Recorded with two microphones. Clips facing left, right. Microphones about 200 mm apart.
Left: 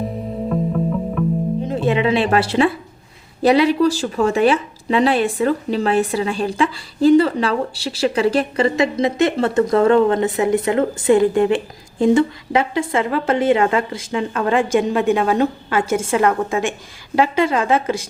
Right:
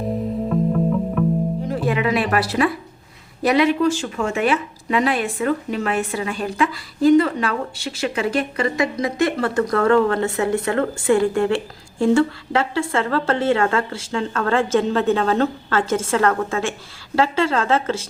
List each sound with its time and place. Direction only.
0.4 s music: centre (ahead or behind)
1.6 s music: 25° left (ahead or behind)
3.4 s speech: 30° left (ahead or behind); by 18.1 s 15° left (ahead or behind)